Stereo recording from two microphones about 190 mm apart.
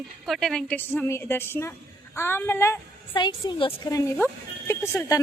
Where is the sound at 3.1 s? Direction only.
25° left (ahead or behind).